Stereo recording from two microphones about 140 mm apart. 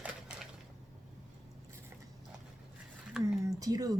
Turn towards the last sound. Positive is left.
turn(degrees=-25)  # may be behind; listen again after turning